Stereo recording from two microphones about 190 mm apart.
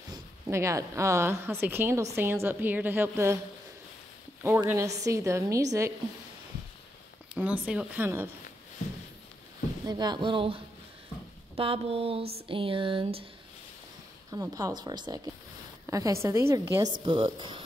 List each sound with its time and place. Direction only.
0.1 s speech: 15° right (ahead or behind)
4.4 s speech: 10° right (ahead or behind)
7.3 s speech: 5° right (ahead or behind)
9.8 s speech: 20° right (ahead or behind)
14.3 s speech: 20° right (ahead or behind)